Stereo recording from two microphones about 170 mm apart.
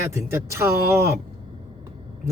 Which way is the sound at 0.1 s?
15° right (ahead or behind).